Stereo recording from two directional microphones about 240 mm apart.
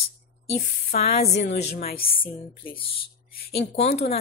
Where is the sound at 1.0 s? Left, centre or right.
Left.